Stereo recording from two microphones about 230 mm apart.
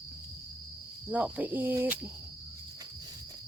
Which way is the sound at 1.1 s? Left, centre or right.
Centre.